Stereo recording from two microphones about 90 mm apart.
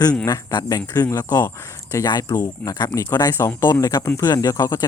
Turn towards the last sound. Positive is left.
turn(degrees=40)  # may be behind; listen again after turning